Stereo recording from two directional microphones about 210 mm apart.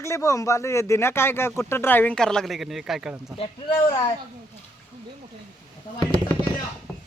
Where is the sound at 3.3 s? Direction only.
25° left (ahead or behind).